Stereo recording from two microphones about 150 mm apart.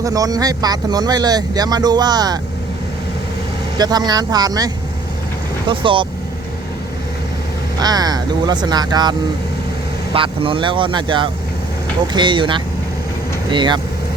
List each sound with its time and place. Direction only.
0.0 s speech: 25° right (ahead or behind)
3.8 s speech: 25° right (ahead or behind)
7.8 s speech: 25° right (ahead or behind)